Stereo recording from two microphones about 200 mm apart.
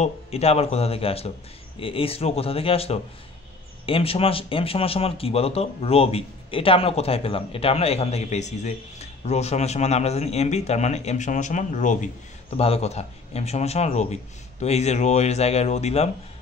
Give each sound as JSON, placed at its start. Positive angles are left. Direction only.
{"t": 0.0, "sound": "a man's voice", "side_deg": 30}